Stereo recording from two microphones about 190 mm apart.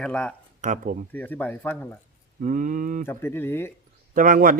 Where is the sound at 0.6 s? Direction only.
45° right (ahead or behind).